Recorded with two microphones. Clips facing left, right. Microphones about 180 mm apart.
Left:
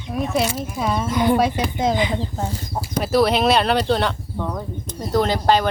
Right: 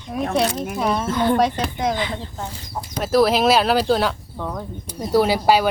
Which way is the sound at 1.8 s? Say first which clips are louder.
Left 3 dB; 20° left (ahead or behind).